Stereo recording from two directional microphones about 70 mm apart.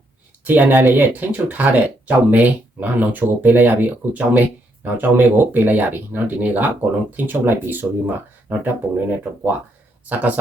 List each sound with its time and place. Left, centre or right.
0.4 s speech: right